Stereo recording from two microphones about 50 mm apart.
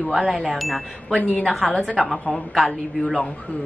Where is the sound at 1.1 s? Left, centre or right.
Left.